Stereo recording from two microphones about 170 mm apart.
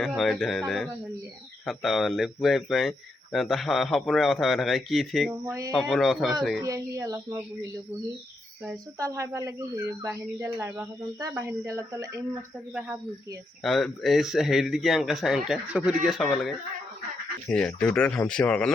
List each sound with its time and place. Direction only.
0.0 s speech: centre (ahead or behind)
1.6 s a man's voice: centre (ahead or behind)
5.5 s a sound: 20° right (ahead or behind)
5.7 s a man's voice: centre (ahead or behind)
6.6 s a sound: 20° right (ahead or behind)
9.0 s speech: 15° right (ahead or behind)
13.6 s a man's voice: centre (ahead or behind)